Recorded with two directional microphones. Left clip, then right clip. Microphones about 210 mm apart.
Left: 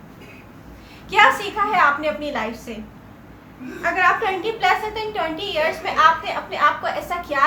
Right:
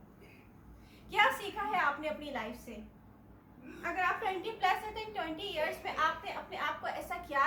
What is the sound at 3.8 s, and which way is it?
A woman's voice, 20° left (ahead or behind).